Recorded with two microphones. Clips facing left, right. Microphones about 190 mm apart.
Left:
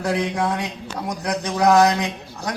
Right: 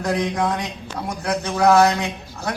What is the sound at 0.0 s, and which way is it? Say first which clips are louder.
Male singing: even; 10° left (ahead or behind).